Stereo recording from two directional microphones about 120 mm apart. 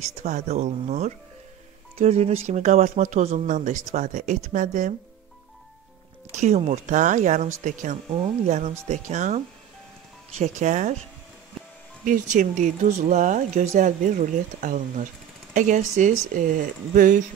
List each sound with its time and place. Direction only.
0.2 s speech: 75° right (ahead or behind)
6.4 s speech: 70° right (ahead or behind); by 8.0 s 90° right
8.5 s speech: 70° right (ahead or behind); by 9.4 s 90° right
10.4 s speech: 85° right
12.0 s speech: 90° right